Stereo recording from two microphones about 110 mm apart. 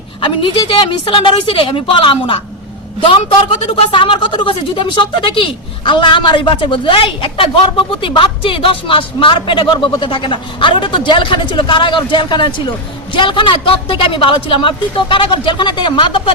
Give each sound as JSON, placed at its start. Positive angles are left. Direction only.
{"t": 0.2, "sound": "a woman's voice", "side_deg": 45}